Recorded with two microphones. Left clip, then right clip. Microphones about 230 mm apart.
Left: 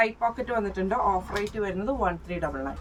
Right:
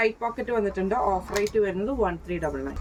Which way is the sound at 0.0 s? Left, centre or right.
Centre.